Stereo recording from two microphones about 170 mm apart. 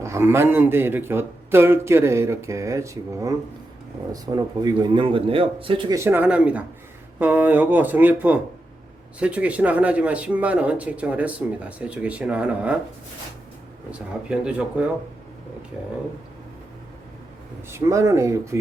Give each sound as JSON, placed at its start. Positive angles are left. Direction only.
{"t": 0.0, "sound": "speech", "side_deg": -15}
{"t": 6.0, "sound": "speech", "side_deg": -10}
{"t": 14.3, "sound": "speech", "side_deg": -5}
{"t": 17.7, "sound": "speech", "side_deg": -15}